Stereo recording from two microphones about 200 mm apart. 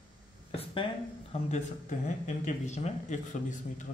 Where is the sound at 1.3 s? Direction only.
35° left (ahead or behind).